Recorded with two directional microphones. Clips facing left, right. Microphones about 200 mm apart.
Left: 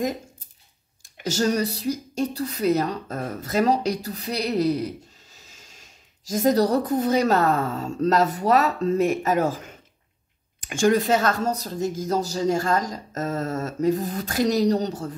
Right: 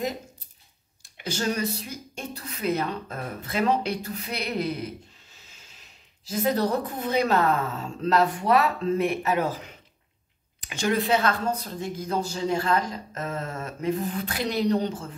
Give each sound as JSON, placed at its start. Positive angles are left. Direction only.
{"t": 1.1, "sound": "speech", "side_deg": 45}